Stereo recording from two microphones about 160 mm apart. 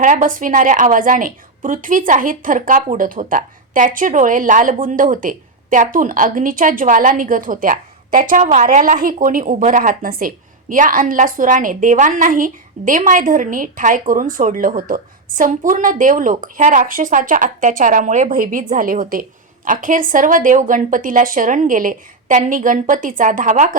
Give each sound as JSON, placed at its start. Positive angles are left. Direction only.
{"t": 0.0, "sound": "a woman's voice", "side_deg": -55}